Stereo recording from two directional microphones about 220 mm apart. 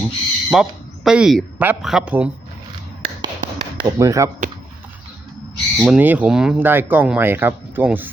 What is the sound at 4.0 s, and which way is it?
Speech, 15° right (ahead or behind).